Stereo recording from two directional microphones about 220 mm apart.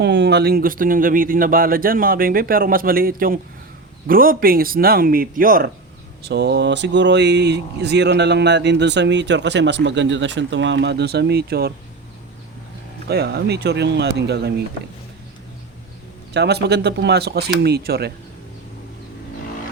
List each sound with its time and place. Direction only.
0.0 s speech: 50° right (ahead or behind)
13.1 s speech: 45° right (ahead or behind)
16.3 s speech: 50° right (ahead or behind)